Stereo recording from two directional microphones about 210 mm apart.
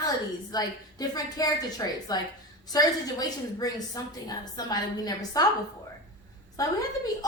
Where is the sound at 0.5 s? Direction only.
20° left (ahead or behind).